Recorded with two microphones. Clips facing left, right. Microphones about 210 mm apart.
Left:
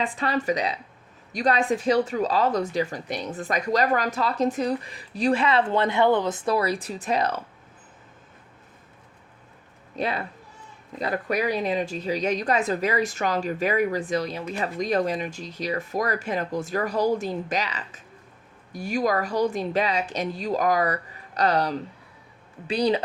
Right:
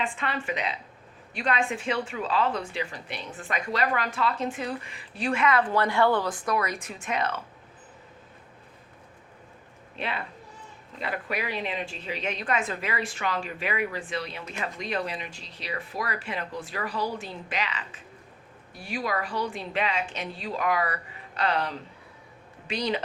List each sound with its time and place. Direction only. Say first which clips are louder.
0.0 s a woman's voice: left 5 dB; 35° left (ahead or behind)
9.9 s a woman's voice: left 6 dB; 40° left (ahead or behind)